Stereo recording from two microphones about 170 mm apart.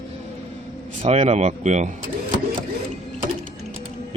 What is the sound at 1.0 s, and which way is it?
Speech, 40° right (ahead or behind).